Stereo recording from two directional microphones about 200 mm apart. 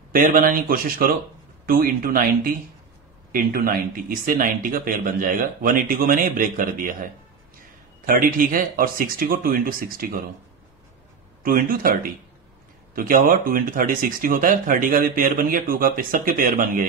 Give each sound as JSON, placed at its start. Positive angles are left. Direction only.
{"t": 0.1, "sound": "speech", "side_deg": -45}
{"t": 8.1, "sound": "speech", "side_deg": -45}
{"t": 11.4, "sound": "speech", "side_deg": -45}